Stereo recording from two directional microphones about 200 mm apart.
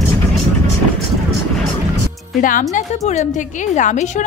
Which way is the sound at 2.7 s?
35° left (ahead or behind).